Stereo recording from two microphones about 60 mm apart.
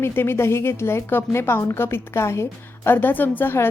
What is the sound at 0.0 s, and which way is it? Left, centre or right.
A woman's voice, left.